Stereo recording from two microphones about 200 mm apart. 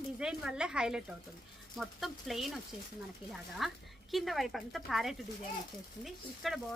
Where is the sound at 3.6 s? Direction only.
Centre (ahead or behind).